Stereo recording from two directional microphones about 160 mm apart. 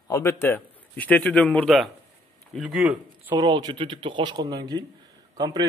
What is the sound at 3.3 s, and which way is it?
A man's voice, 25° right (ahead or behind).